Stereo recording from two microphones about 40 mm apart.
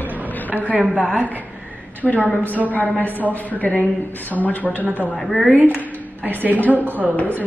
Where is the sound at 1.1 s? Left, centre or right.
Right.